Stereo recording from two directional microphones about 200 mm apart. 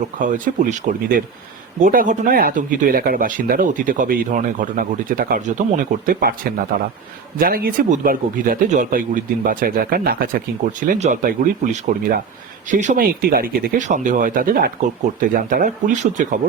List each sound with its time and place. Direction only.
0.2 s speech: 40° right (ahead or behind)